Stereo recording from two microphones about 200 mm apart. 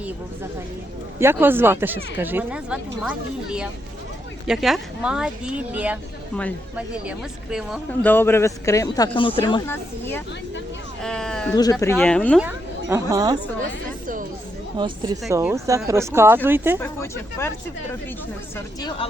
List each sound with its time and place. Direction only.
1.2 s speech: 10° right (ahead or behind)
8.0 s speech: 10° left (ahead or behind)
9.6 s speech: 10° left (ahead or behind)
11.5 s speech: 20° left (ahead or behind)
11.9 s speech: 5° left (ahead or behind)
12.4 s speech: 10° right (ahead or behind)
14.8 s speech: 20° right (ahead or behind)
16.8 s speech: 10° left (ahead or behind)
18.5 s speech: 20° left (ahead or behind)